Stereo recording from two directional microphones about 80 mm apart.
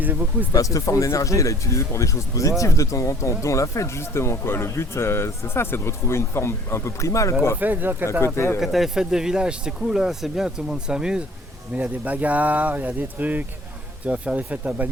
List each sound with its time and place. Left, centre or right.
0.0 s speech: right
0.5 s speech: left
7.6 s speech: right
8.2 s speech: left
8.6 s speech: centre